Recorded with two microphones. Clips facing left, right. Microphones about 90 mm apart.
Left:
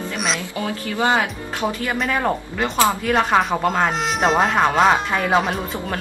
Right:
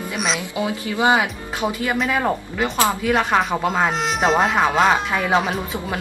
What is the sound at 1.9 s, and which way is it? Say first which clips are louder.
A woman's voice: right 1 dB; 5° right (ahead or behind).